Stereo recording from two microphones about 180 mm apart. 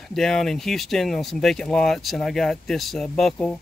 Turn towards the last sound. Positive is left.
turn(degrees=5)  # may be behind; listen again after turning